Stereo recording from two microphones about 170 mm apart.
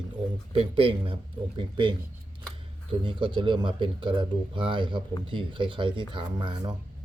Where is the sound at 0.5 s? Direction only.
30° right (ahead or behind).